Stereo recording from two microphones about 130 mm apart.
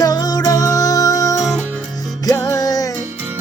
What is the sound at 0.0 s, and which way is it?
Music, 30° left (ahead or behind).